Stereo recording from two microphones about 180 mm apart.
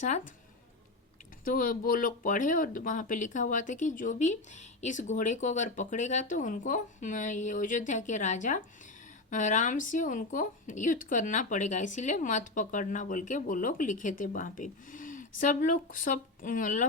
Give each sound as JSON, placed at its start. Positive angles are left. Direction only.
{"t": 1.5, "sound": "speech", "side_deg": 50}